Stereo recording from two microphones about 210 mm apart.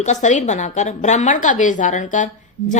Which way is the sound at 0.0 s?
35° left (ahead or behind).